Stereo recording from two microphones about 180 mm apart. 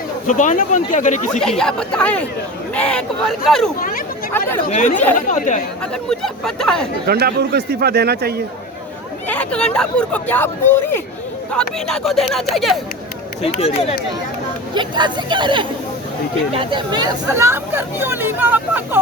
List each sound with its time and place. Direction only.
0.3 s speech: 45° left (ahead or behind)
1.4 s speech: 5° left (ahead or behind)
3.8 s speech: 50° left (ahead or behind)
4.3 s speech: 10° left (ahead or behind)
4.7 s speech: 40° left (ahead or behind)
5.8 s speech: 5° left (ahead or behind)
7.1 s a man's voice: 60° right (ahead or behind)
9.2 s speech: 10° left (ahead or behind)
13.4 s speech: 35° left (ahead or behind)
14.8 s speech: 25° right (ahead or behind)